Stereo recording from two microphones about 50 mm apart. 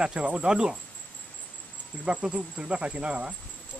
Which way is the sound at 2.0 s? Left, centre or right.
Right.